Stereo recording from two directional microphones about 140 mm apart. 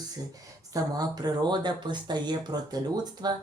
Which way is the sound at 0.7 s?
30° right (ahead or behind).